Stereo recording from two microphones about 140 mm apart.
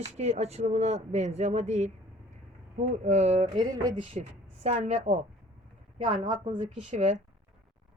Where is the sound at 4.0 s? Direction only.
45° right (ahead or behind).